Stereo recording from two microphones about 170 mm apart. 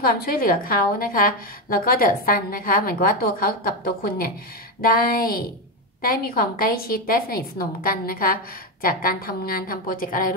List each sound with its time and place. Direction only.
0.0 s a woman's voice: 60° left (ahead or behind)